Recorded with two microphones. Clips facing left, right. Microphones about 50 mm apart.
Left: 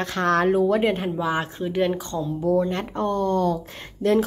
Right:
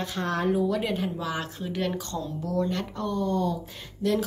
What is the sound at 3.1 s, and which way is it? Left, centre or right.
Speech, left.